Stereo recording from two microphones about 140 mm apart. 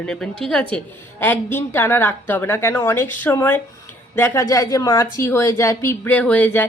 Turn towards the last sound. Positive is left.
turn(degrees=10)  # may be behind; listen again after turning